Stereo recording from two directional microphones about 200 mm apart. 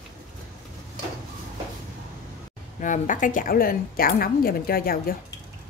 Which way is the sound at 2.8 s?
40° left (ahead or behind).